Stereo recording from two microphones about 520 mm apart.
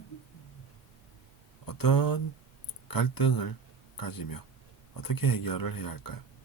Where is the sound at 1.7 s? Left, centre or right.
Left.